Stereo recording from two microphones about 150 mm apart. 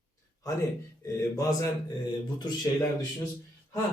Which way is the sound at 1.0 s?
20° left (ahead or behind).